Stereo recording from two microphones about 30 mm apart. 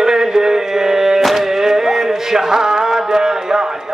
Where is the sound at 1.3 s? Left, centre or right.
Centre.